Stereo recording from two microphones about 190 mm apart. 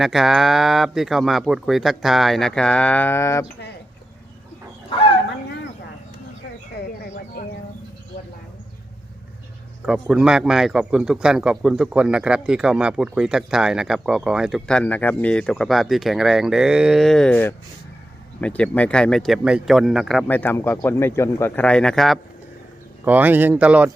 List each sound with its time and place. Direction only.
0.0 s speech: centre (ahead or behind); by 3.4 s 15° left (ahead or behind)
4.9 s bow-wow: 30° left (ahead or behind)
9.8 s speech: 5° right (ahead or behind)